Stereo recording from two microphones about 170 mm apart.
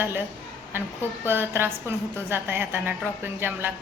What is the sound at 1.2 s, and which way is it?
A woman's voice, 10° right (ahead or behind).